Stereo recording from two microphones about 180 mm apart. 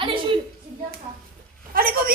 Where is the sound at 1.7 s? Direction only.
55° right (ahead or behind).